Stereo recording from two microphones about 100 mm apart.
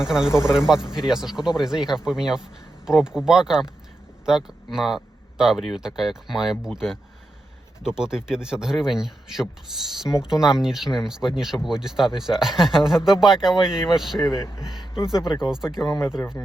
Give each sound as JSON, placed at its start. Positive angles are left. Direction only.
{"t": 0.0, "sound": "speech", "side_deg": -5}
{"t": 14.3, "sound": "speech", "side_deg": 30}
{"t": 14.6, "sound": "speech", "side_deg": -5}
{"t": 15.9, "sound": "speech", "side_deg": 30}